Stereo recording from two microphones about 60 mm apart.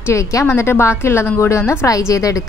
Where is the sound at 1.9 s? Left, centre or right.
Left.